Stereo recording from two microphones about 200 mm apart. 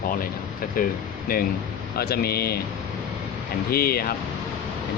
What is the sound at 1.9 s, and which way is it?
Speech, 50° left (ahead or behind).